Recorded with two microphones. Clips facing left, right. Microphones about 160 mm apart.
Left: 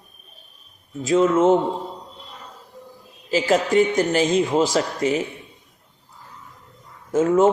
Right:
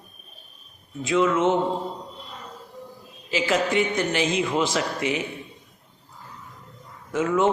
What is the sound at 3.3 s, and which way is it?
A man's voice, 40° left (ahead or behind).